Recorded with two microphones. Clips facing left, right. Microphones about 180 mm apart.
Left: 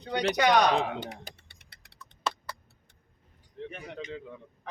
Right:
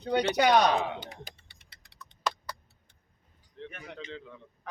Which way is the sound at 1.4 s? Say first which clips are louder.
Left 2 dB; 60° left (ahead or behind).